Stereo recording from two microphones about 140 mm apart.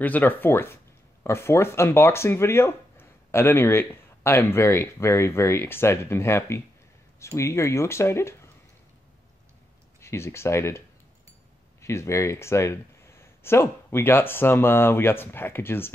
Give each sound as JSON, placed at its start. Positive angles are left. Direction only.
{"t": 0.0, "sound": "speech", "side_deg": 10}
{"t": 9.9, "sound": "speech", "side_deg": 20}
{"t": 11.8, "sound": "speech", "side_deg": 20}